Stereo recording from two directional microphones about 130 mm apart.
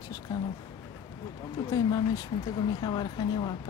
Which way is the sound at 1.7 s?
30° left (ahead or behind).